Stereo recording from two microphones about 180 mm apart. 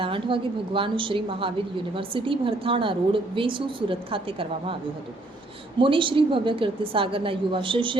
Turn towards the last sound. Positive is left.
turn(degrees=-30)  # may be behind; listen again after turning